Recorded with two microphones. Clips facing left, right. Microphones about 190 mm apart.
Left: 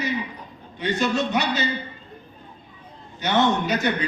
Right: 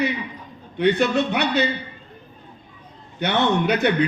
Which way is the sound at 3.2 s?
60° right (ahead or behind).